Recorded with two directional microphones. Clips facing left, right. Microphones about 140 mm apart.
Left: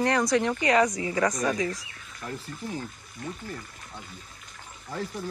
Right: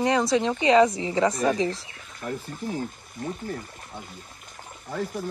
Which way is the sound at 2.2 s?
10° right (ahead or behind).